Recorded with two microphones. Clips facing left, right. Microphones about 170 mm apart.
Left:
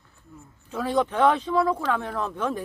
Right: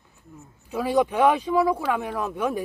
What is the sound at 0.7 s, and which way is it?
Speech, 10° right (ahead or behind).